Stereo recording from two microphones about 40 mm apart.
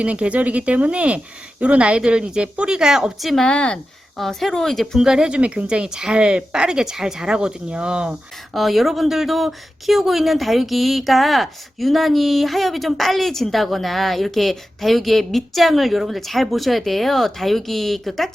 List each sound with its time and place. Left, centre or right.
0.0 s speech: right; by 3.1 s centre
3.2 s speech: centre
3.4 s speech: left
4.3 s speech: centre
4.9 s speech: centre
5.4 s speech: right
8.5 s speech: centre